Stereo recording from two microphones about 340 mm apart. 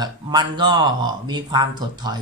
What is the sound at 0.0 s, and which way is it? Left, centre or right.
Speech, centre.